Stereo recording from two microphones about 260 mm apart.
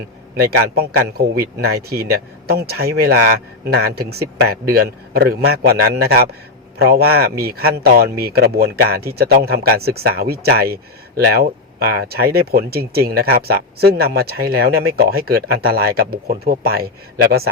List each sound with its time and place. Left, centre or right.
0.4 s speech: right